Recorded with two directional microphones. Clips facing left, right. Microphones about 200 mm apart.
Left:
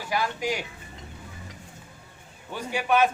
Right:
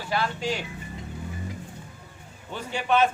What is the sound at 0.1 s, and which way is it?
Speech, 15° left (ahead or behind).